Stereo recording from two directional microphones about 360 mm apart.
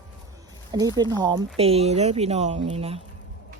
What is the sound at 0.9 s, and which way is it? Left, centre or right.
Speech, centre.